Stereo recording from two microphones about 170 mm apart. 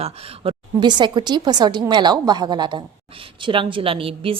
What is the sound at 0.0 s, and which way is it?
A woman's voice, 35° right (ahead or behind).